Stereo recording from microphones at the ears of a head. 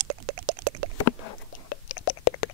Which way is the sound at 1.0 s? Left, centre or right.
Left.